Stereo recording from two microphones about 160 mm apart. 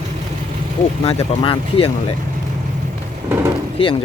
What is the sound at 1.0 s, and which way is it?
Speech, 35° left (ahead or behind).